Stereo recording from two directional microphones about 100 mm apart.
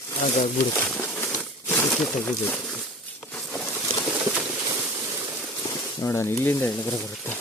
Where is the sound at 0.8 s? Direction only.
20° left (ahead or behind).